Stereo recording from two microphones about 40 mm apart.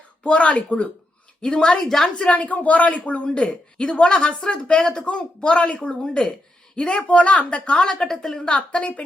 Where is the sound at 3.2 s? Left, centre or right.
Left.